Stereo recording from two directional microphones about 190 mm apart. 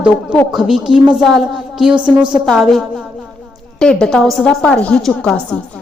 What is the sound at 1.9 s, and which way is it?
Speech, 25° right (ahead or behind).